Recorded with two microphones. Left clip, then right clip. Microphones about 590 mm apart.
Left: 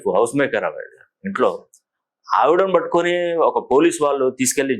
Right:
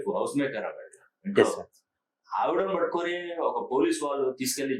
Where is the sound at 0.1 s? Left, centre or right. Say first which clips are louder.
Left 12 dB; left.